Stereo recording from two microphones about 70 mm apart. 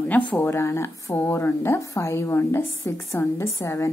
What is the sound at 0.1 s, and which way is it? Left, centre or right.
Speech, left.